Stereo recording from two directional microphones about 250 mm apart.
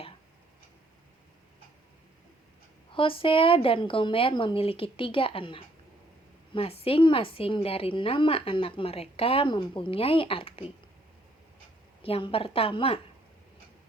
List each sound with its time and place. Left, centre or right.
2.9 s a woman's voice: left
12.0 s a woman's voice: left